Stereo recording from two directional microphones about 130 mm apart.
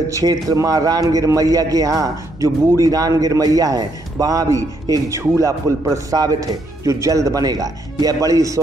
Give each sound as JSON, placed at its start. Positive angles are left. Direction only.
{"t": 0.1, "sound": "a man's voice", "side_deg": -30}